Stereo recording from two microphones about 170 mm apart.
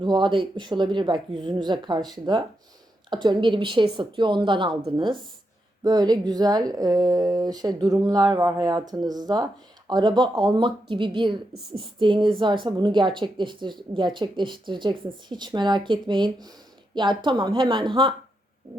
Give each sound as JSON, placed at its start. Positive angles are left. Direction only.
{"t": 0.0, "sound": "a woman's voice", "side_deg": -25}